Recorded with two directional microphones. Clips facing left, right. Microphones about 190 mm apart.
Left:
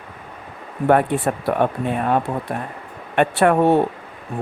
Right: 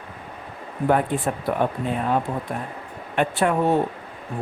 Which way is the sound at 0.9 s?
65° left (ahead or behind).